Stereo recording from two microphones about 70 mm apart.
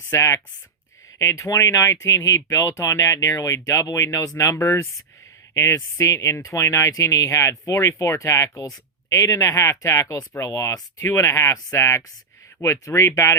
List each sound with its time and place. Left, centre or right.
0.1 s speech: left
4.5 s speech: left